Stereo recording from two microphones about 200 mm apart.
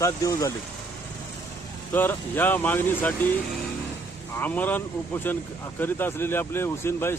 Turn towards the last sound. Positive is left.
turn(degrees=10)  # may be behind; listen again after turning